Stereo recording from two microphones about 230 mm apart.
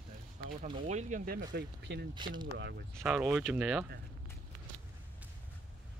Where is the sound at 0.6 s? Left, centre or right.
Right.